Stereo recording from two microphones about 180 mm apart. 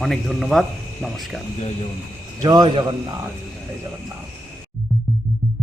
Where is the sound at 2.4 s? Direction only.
25° right (ahead or behind).